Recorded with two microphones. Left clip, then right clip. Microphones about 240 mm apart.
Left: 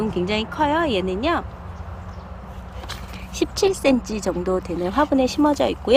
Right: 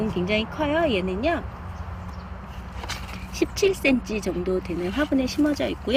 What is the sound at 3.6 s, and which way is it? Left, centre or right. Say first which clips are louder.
A woman's voice: left 3 dB; centre.